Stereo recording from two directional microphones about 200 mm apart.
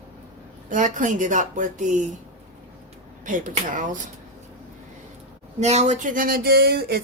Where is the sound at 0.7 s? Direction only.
40° right (ahead or behind).